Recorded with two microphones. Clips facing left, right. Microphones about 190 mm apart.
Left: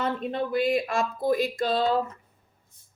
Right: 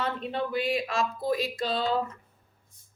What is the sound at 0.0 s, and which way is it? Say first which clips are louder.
A woman's voice: left 3 dB; 45° left (ahead or behind).